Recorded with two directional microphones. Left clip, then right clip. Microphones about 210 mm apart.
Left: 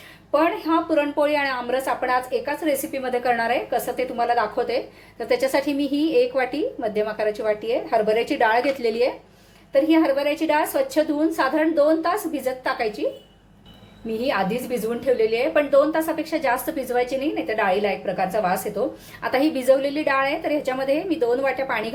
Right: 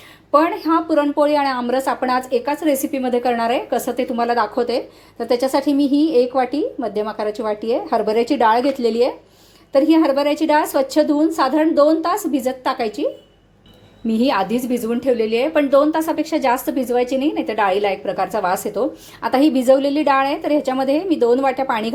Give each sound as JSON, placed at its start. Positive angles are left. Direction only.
{"t": 0.3, "sound": "a woman's voice", "side_deg": -40}
{"t": 14.1, "sound": "a woman's voice", "side_deg": -40}